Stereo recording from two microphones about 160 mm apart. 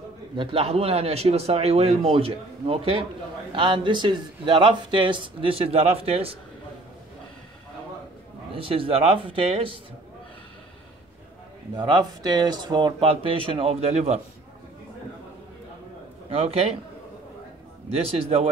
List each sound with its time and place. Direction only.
0.4 s speech: 35° right (ahead or behind)
8.5 s speech: 35° right (ahead or behind)
11.7 s speech: 30° right (ahead or behind)
16.3 s speech: 40° right (ahead or behind)
17.9 s speech: 40° right (ahead or behind)